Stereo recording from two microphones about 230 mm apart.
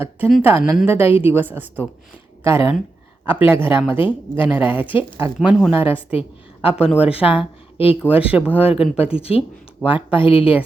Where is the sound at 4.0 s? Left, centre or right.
Left.